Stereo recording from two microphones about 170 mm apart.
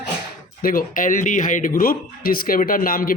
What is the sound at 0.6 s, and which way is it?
Speech, 55° left (ahead or behind).